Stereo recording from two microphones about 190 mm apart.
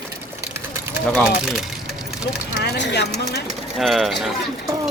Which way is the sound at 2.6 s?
65° left (ahead or behind).